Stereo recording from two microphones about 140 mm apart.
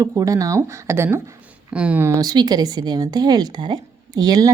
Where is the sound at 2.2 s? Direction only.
30° right (ahead or behind).